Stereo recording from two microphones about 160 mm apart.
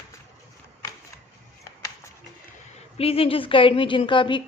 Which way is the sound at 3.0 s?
35° left (ahead or behind).